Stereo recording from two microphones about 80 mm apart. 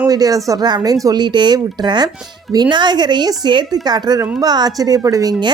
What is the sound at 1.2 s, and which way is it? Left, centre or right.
Speech, right.